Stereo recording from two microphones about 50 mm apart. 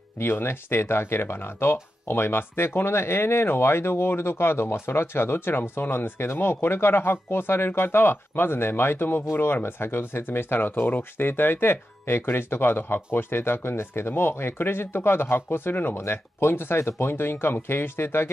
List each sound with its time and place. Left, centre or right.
0.2 s speech: left
16.0 s speech: left